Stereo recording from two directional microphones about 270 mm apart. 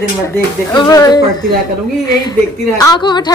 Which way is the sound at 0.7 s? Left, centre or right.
Centre.